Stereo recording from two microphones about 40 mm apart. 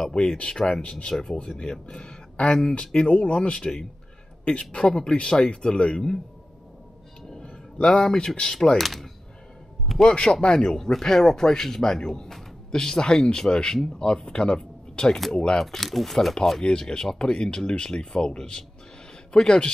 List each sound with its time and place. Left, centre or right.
0.1 s speech: centre
7.2 s a sound: centre
8.7 s speech: centre
10.0 s speech: left; by 16.3 s centre
16.6 s speech: left